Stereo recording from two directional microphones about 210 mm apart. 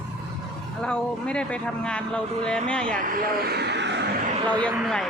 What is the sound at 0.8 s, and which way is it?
Speech, 5° left (ahead or behind).